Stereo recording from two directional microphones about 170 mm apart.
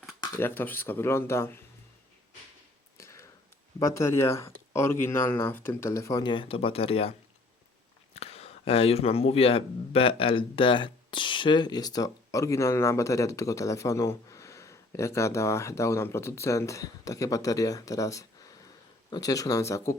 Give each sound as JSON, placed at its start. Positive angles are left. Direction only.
{"t": 0.2, "sound": "speech", "side_deg": 15}
{"t": 3.0, "sound": "a sound", "side_deg": 15}
{"t": 3.8, "sound": "speech", "side_deg": 15}
{"t": 8.1, "sound": "speech", "side_deg": 35}